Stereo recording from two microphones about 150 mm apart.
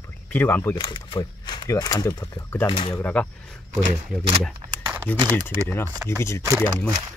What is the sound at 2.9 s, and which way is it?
Speech, 10° left (ahead or behind).